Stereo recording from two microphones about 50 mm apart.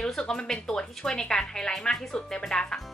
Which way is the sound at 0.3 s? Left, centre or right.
Centre.